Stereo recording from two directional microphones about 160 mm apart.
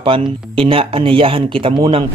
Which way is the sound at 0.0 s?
35° right (ahead or behind).